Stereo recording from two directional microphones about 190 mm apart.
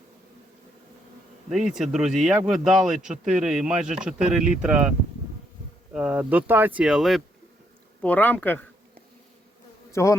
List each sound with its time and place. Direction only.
1.5 s speech: centre (ahead or behind)
8.0 s speech: 10° left (ahead or behind)
9.9 s bee: 15° left (ahead or behind)